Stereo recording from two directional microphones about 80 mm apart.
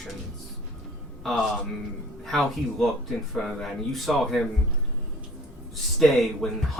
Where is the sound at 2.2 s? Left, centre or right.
Centre.